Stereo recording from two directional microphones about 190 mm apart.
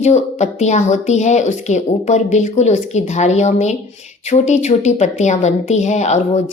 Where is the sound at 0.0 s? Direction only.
35° left (ahead or behind).